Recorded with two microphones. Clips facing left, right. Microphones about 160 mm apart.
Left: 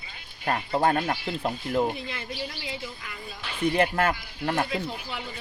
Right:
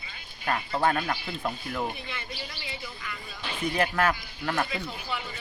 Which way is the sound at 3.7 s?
30° left (ahead or behind).